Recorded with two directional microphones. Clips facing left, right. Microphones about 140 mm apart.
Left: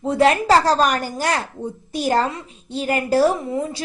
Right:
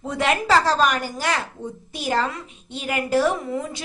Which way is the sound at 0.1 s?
35° left (ahead or behind).